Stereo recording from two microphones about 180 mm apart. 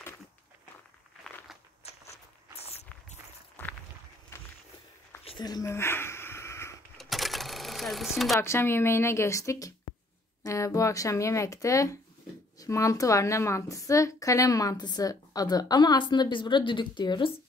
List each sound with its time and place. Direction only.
1.2 s a sound: centre (ahead or behind)
3.6 s walk: 10° left (ahead or behind)
5.2 s wheeze: 25° left (ahead or behind)
7.0 s sewing machine: centre (ahead or behind)
8.4 s a woman's voice: 15° left (ahead or behind)